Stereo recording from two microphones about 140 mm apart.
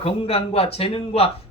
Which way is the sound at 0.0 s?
45° left (ahead or behind).